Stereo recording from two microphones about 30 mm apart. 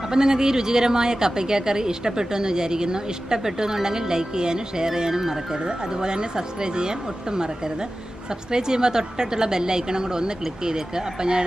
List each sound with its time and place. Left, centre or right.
0.1 s a woman's voice: right
5.7 s a woman's voice: right